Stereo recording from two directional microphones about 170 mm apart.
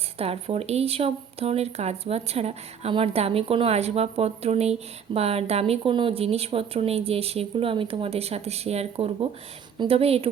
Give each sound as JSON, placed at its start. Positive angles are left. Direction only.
{"t": 0.2, "sound": "speech", "side_deg": -35}